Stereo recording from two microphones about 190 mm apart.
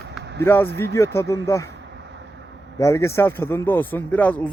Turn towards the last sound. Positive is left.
turn(degrees=10)  # may be behind; listen again after turning